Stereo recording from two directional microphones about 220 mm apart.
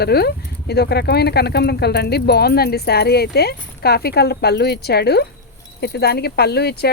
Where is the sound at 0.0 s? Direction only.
45° left (ahead or behind).